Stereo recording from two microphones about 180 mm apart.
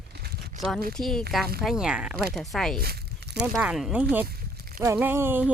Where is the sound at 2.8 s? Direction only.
60° right (ahead or behind).